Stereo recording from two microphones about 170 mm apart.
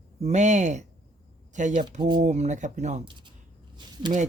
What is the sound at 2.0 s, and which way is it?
Speech, 25° right (ahead or behind).